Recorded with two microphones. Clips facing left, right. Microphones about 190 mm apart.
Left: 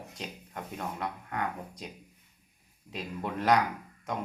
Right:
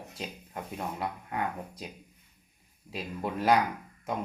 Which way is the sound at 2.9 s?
5° right (ahead or behind).